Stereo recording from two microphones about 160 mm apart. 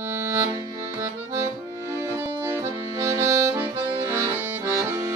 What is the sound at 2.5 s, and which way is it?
Accordion, 20° right (ahead or behind).